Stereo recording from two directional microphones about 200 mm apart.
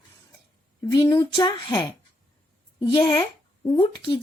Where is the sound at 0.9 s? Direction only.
20° left (ahead or behind).